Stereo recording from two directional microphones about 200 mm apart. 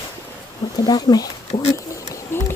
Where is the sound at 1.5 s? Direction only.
35° left (ahead or behind).